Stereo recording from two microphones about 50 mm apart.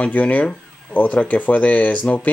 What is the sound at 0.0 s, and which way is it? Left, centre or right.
Speech, left.